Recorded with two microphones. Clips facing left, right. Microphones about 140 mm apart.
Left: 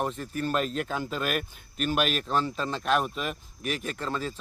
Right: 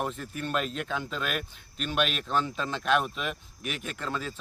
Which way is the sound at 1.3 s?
50° left (ahead or behind).